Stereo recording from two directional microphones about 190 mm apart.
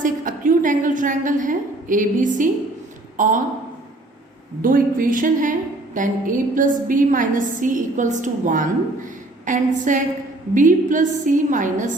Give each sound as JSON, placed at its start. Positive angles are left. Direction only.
{"t": 0.0, "sound": "a woman's voice", "side_deg": -45}
{"t": 4.6, "sound": "a woman's voice", "side_deg": -45}